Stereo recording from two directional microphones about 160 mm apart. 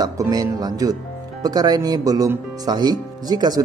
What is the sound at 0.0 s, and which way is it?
Speech, 25° right (ahead or behind).